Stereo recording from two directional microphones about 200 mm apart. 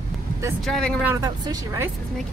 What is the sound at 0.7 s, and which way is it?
Speech, 5° left (ahead or behind).